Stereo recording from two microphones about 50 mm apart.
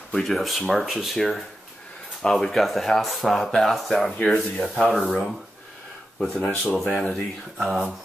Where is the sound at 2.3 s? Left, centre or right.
Centre.